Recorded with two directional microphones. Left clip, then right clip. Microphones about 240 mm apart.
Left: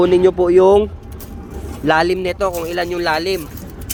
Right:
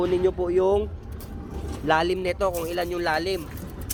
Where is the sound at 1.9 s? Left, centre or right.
Centre.